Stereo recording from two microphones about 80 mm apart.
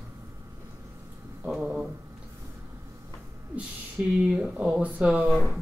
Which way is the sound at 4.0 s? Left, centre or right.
Right.